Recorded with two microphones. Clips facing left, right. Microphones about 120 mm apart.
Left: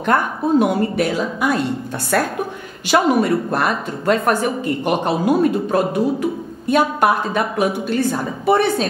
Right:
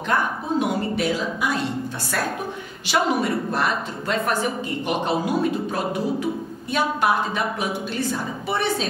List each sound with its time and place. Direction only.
0.0 s a woman's voice: 55° left (ahead or behind)